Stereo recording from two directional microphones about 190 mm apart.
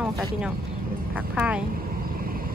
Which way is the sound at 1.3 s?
5° right (ahead or behind).